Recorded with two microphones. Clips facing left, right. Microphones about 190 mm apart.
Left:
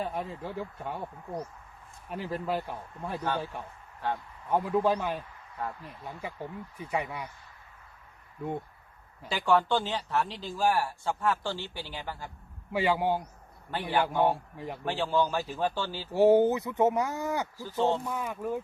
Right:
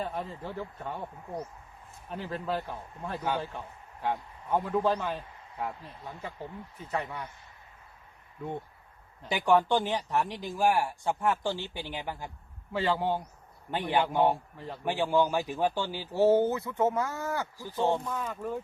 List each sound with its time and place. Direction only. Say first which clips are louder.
0.0 s speech: left 1 dB; 10° left (ahead or behind)
9.3 s speech: right 1 dB; 15° right (ahead or behind)
12.7 s speech: left 2 dB; 10° left (ahead or behind)
13.7 s speech: right 1 dB; 20° right (ahead or behind)
16.1 s speech: left 2 dB; 15° left (ahead or behind)
17.6 s speech: even; 15° right (ahead or behind)
18.0 s speech: left 1 dB; 10° left (ahead or behind)